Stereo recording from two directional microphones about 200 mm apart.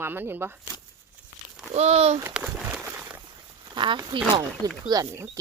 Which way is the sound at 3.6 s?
25° right (ahead or behind).